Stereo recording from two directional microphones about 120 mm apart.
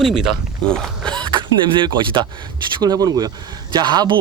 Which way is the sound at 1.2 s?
40° right (ahead or behind).